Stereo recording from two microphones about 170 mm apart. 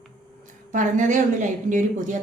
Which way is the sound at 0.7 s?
45° right (ahead or behind).